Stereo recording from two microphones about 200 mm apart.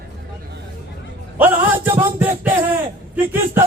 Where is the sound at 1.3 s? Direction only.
10° right (ahead or behind).